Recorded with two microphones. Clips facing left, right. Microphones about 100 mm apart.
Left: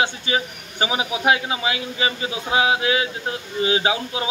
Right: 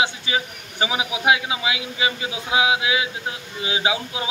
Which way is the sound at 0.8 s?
35° left (ahead or behind).